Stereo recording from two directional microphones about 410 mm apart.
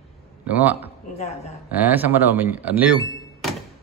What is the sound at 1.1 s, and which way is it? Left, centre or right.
Speech, centre.